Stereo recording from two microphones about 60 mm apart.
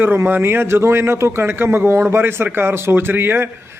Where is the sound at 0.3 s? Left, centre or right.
Right.